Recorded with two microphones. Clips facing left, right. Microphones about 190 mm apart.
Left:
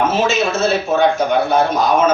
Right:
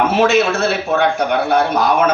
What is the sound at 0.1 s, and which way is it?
A man's voice, 60° right (ahead or behind).